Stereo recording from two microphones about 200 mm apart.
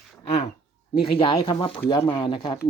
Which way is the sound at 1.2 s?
25° left (ahead or behind).